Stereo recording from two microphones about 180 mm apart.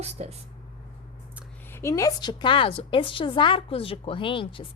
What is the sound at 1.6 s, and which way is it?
A woman's voice, 15° left (ahead or behind).